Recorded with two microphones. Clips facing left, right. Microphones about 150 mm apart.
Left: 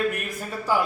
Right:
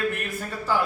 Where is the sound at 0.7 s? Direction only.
10° left (ahead or behind).